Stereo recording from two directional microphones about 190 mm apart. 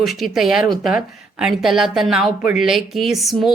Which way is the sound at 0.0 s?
Centre (ahead or behind).